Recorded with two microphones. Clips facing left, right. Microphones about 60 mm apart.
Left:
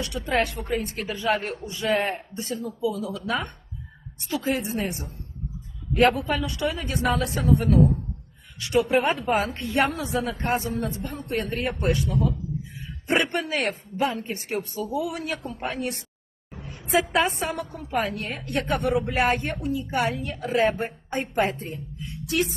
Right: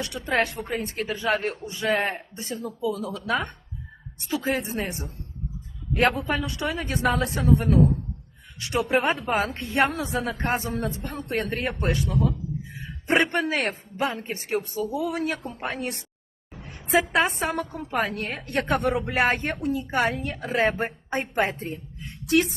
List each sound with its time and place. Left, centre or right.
0.3 s a woman's voice: right
2.6 s a woman's voice: right
17.4 s a woman's voice: right
17.9 s a woman's voice: right